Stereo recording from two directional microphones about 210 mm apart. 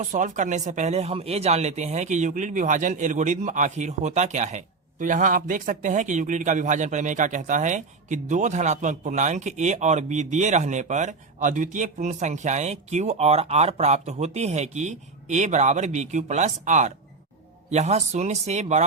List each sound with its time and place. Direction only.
0.0 s speech: 35° right (ahead or behind)